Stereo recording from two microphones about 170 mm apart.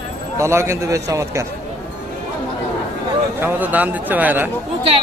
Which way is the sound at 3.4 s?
10° right (ahead or behind).